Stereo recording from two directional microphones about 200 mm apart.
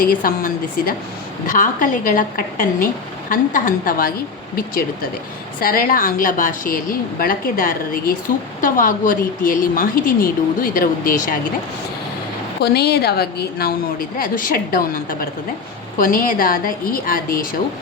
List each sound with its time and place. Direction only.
0.0 s a woman's voice: 45° left (ahead or behind)
12.6 s a woman's voice: 55° left (ahead or behind)